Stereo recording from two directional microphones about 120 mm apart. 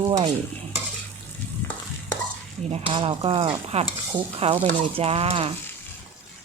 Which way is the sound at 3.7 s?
60° right (ahead or behind).